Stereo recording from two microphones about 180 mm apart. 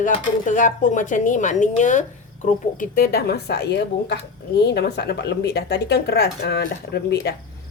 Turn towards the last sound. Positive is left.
turn(degrees=65)  # may be behind; listen again after turning